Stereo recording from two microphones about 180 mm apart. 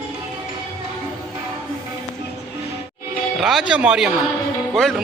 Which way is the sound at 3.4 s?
Centre (ahead or behind).